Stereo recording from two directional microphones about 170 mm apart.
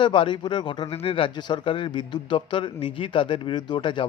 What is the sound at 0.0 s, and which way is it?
Speech, 30° left (ahead or behind).